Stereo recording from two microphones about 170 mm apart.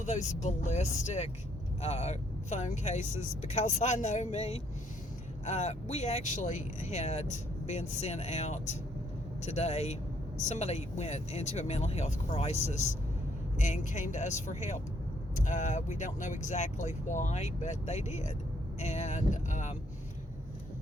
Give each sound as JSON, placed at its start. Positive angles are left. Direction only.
{"t": 0.0, "sound": "speech", "side_deg": 45}